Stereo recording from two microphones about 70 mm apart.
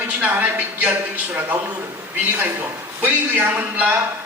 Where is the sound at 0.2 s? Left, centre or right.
Right.